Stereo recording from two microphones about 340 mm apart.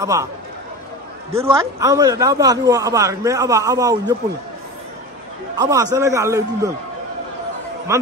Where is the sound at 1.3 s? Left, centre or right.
Centre.